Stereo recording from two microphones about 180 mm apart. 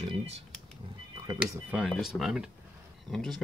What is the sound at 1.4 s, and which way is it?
Speech, 5° right (ahead or behind).